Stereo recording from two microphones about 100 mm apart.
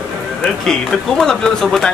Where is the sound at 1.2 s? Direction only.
5° left (ahead or behind).